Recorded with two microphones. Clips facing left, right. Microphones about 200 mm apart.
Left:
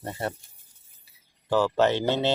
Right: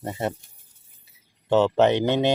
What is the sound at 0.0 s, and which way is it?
Speech, 20° right (ahead or behind).